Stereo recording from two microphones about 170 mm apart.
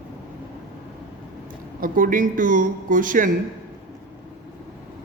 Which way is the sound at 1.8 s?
50° right (ahead or behind).